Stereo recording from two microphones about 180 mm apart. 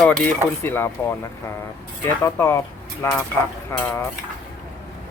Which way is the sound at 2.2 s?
15° left (ahead or behind).